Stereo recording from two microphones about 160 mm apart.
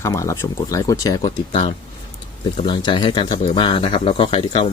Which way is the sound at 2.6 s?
30° left (ahead or behind).